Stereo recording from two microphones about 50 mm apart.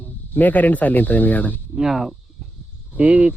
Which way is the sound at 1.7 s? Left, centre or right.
Centre.